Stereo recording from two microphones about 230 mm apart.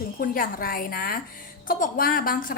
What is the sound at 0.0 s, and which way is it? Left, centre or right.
A woman's voice, left.